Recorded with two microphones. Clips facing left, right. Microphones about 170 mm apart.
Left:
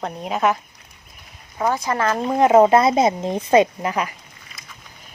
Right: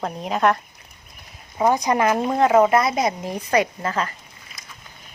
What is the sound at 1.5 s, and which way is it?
Speech, 15° right (ahead or behind).